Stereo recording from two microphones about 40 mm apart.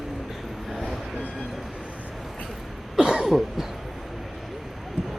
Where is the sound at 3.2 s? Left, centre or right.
Centre.